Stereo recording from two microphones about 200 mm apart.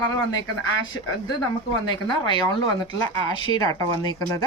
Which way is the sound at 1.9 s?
25° left (ahead or behind).